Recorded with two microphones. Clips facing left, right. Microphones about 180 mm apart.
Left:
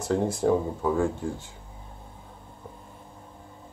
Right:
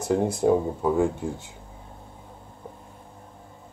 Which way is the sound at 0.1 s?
15° right (ahead or behind).